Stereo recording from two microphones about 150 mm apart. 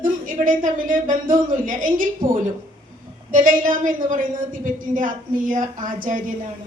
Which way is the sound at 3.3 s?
60° right (ahead or behind).